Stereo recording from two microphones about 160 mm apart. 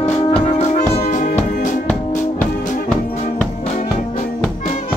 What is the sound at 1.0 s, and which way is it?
Music, 55° left (ahead or behind).